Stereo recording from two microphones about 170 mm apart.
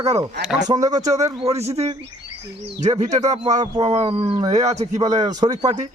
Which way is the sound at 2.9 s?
45° right (ahead or behind).